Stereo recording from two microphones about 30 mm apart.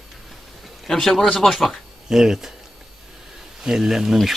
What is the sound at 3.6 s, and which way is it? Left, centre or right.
Speech, centre.